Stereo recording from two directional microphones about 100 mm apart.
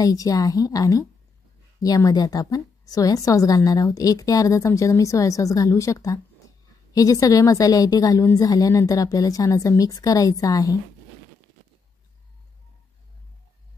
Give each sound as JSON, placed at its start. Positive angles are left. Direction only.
{"t": 0.0, "sound": "a woman's voice", "side_deg": 35}
{"t": 2.0, "sound": "a woman's voice", "side_deg": 40}